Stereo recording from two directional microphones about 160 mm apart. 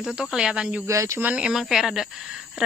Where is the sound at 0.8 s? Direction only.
20° right (ahead or behind).